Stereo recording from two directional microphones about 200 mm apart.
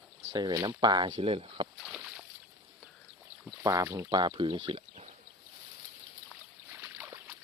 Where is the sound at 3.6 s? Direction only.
15° right (ahead or behind).